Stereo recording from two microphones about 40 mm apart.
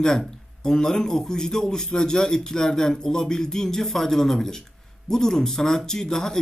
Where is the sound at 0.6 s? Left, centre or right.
Centre.